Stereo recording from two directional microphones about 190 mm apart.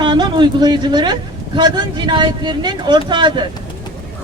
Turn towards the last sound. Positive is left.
turn(degrees=-25)  # may be behind; listen again after turning